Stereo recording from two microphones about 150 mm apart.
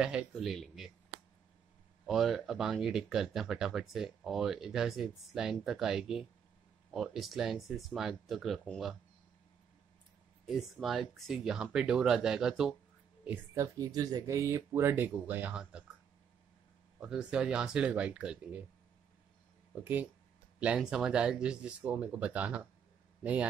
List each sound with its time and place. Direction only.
0.0 s speech: 5° right (ahead or behind)
2.0 s speech: centre (ahead or behind)
10.4 s speech: centre (ahead or behind)
13.7 s speech: 25° right (ahead or behind); by 15.8 s 5° right (ahead or behind)
17.0 s speech: 5° right (ahead or behind)
19.7 s speech: 10° right (ahead or behind)